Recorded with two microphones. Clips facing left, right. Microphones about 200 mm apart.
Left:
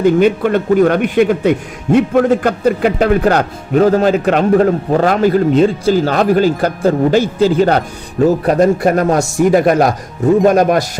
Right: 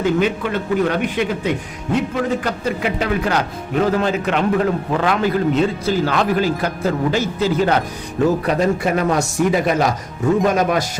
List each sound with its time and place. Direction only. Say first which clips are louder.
0.0 s a man's voice: left 7 dB; 50° left (ahead or behind)
8.2 s a man's voice: left 6 dB; 45° left (ahead or behind)